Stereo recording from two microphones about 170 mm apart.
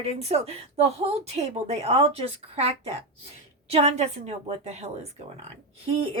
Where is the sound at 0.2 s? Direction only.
40° right (ahead or behind).